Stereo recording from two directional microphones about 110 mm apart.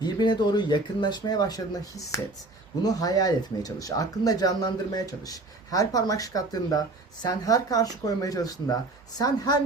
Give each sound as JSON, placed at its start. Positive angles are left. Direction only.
{"t": 0.0, "sound": "speech", "side_deg": 40}